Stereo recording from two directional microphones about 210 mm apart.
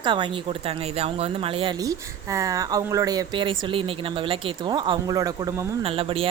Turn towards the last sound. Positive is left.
turn(degrees=-25)  # may be behind; listen again after turning